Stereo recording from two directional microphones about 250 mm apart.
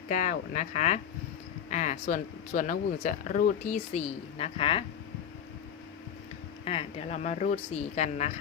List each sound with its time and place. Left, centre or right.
0.1 s speech: left
6.7 s speech: left